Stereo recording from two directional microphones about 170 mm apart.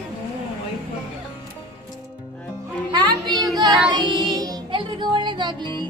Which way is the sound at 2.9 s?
25° right (ahead or behind).